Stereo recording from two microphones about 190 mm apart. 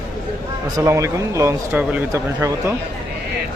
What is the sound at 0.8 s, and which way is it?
Speech, 15° right (ahead or behind).